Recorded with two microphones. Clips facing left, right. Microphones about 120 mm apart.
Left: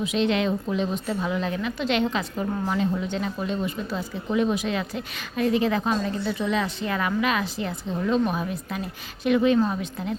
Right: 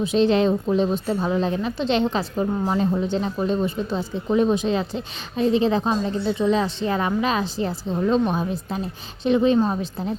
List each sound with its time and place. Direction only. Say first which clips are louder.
0.0 s a woman's voice: right 5 dB; 30° right (ahead or behind)